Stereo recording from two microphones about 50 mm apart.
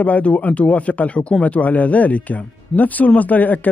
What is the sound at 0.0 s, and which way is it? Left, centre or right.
Speech, left.